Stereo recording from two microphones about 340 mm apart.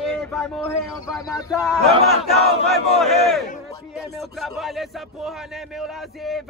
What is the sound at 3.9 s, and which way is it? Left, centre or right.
Speech, centre.